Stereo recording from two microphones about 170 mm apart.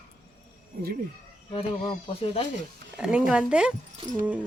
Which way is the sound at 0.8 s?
65° right (ahead or behind).